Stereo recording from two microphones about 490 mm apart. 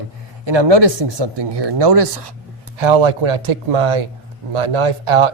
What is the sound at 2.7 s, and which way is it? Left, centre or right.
Speech, right.